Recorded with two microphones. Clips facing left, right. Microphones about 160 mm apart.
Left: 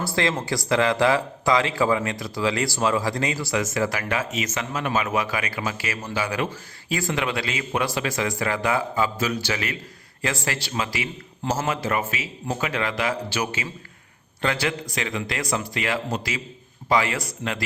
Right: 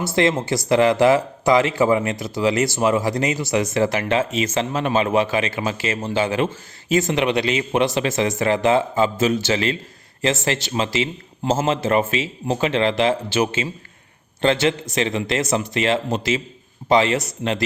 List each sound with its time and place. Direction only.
0.2 s speech: 25° right (ahead or behind)